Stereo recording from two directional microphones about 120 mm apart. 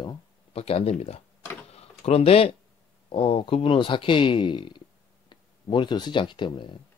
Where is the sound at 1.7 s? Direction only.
60° left (ahead or behind).